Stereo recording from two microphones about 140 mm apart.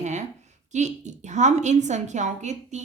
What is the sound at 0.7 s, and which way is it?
A woman's voice, 55° right (ahead or behind).